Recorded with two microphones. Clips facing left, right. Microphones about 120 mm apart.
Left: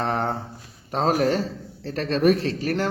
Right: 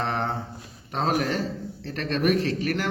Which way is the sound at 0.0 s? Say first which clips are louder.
Left 3 dB; 35° left (ahead or behind).